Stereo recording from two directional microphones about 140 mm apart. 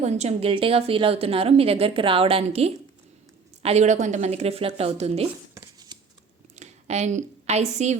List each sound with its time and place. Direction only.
0.0 s a woman's voice: 50° right (ahead or behind)
5.9 s scissors: 30° right (ahead or behind)
6.6 s a woman's voice: 55° right (ahead or behind)